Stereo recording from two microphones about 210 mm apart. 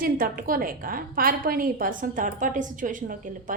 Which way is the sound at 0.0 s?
40° right (ahead or behind).